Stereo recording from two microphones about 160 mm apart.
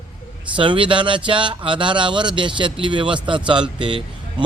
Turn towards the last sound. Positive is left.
turn(degrees=-30)  # may be behind; listen again after turning